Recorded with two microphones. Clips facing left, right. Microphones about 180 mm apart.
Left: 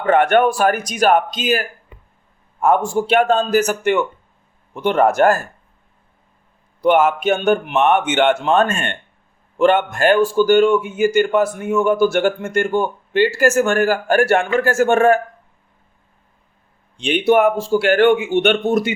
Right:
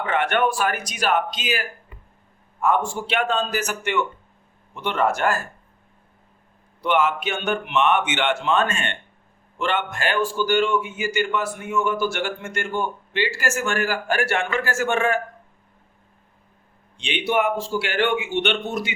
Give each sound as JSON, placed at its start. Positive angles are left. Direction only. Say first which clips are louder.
{"t": 0.0, "sound": "speech", "louder": "left 8 dB", "side_deg": 45}
{"t": 6.8, "sound": "speech", "louder": "left 7 dB", "side_deg": 45}
{"t": 17.0, "sound": "speech", "louder": "left 8 dB", "side_deg": 45}